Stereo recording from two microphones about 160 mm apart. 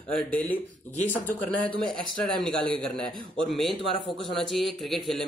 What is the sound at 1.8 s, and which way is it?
A man's voice, 5° left (ahead or behind).